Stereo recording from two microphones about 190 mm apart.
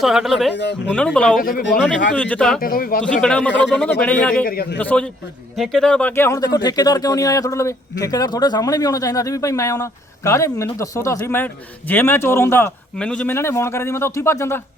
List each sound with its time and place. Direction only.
0.0 s speech: centre (ahead or behind)
0.5 s speech: 65° left (ahead or behind)
0.9 s speech: 5° left (ahead or behind)
1.4 s speech: 50° left (ahead or behind)
1.7 s speech: 5° left (ahead or behind)
2.6 s speech: 50° left (ahead or behind)
3.0 s speech: 5° left (ahead or behind)
4.4 s speech: 50° left (ahead or behind)
4.8 s speech: 5° left (ahead or behind)